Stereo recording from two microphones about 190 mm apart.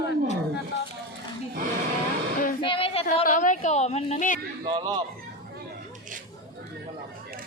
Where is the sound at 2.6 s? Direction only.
30° left (ahead or behind).